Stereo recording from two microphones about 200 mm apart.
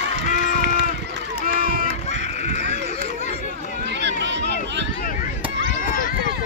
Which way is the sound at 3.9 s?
60° right (ahead or behind).